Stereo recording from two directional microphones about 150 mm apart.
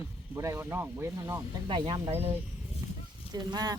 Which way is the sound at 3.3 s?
25° right (ahead or behind).